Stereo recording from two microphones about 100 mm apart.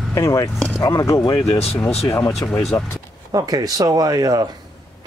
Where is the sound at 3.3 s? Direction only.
40° right (ahead or behind).